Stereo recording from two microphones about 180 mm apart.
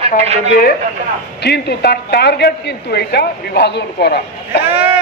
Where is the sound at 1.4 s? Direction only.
65° left (ahead or behind).